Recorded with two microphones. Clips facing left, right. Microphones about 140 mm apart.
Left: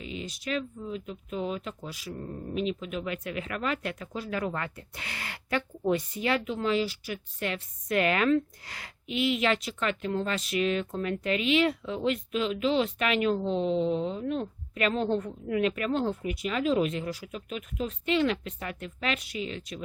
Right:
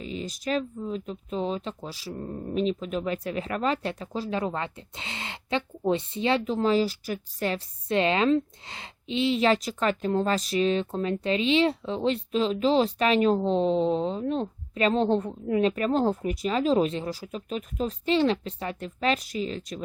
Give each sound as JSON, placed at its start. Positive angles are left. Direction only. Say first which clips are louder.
{"t": 0.0, "sound": "speech", "louder": "right 4 dB", "side_deg": -35}